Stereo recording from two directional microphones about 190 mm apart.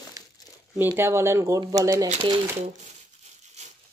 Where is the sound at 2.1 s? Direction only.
30° right (ahead or behind).